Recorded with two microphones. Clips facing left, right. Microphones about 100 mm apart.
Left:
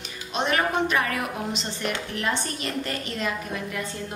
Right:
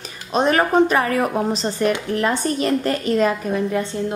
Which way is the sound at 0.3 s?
40° right (ahead or behind).